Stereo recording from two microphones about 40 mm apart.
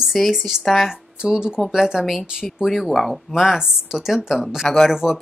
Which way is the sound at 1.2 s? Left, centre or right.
Right.